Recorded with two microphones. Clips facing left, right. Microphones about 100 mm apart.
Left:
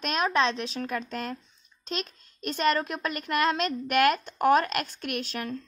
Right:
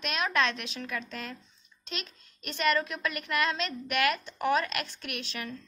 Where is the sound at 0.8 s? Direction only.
45° left (ahead or behind).